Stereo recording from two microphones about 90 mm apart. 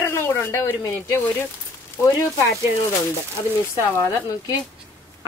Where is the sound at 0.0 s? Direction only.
30° left (ahead or behind).